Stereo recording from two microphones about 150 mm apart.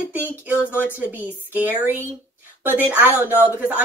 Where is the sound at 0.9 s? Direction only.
10° right (ahead or behind).